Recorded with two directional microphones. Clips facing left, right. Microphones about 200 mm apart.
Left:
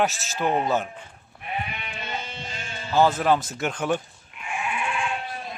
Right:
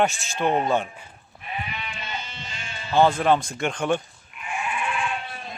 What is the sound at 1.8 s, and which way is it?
Music, 55° left (ahead or behind).